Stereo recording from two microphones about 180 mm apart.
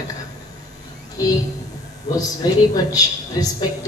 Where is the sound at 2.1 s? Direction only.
20° left (ahead or behind).